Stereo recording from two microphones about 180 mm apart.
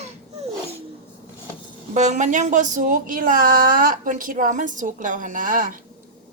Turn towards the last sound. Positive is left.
turn(degrees=-50)  # may be behind; listen again after turning